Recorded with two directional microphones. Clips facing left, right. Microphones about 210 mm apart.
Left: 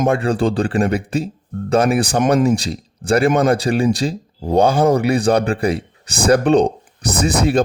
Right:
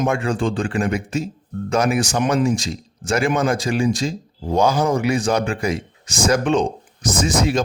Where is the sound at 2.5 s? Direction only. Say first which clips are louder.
Left 4 dB; 35° left (ahead or behind).